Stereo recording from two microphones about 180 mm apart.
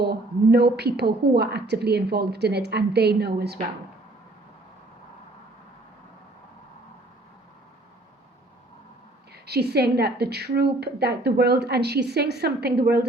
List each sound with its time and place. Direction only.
0.0 s a woman's voice: 65° right (ahead or behind)
9.3 s a woman's voice: 65° right (ahead or behind)